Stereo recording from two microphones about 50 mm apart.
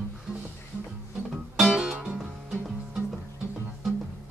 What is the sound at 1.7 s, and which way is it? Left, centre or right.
Music, centre.